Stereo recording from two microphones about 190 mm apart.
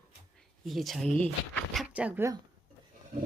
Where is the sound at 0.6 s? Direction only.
Centre (ahead or behind).